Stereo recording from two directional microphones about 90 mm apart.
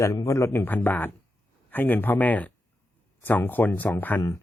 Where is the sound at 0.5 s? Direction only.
20° left (ahead or behind).